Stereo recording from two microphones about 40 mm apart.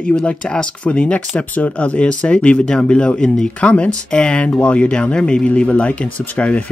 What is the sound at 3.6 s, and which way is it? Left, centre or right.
Speech, left.